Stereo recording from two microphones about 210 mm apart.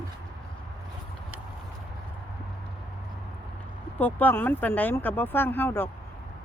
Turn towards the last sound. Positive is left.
turn(degrees=10)  # may be behind; listen again after turning